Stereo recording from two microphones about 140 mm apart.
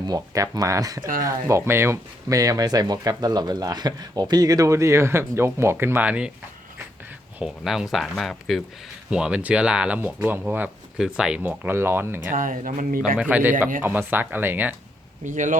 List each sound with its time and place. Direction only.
0.1 s speech: 25° right (ahead or behind); by 6.3 s 10° right (ahead or behind)
7.3 s speech: 5° right (ahead or behind)
12.3 s speech: 70° right (ahead or behind)
13.1 s speech: 10° right (ahead or behind)
15.2 s speech: 65° right (ahead or behind)